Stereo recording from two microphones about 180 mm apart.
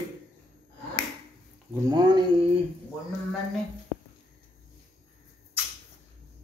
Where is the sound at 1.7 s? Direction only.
20° right (ahead or behind).